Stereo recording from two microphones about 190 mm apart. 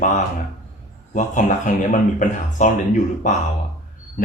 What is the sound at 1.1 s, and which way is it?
Speech, 40° left (ahead or behind).